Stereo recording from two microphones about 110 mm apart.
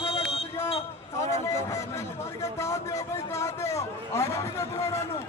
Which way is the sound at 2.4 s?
25° left (ahead or behind).